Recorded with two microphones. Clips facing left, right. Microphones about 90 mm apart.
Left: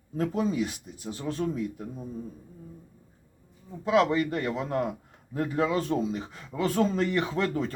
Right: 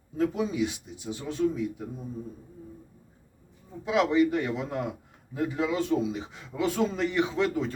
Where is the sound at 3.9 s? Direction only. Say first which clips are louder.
Left 1 dB; 45° left (ahead or behind).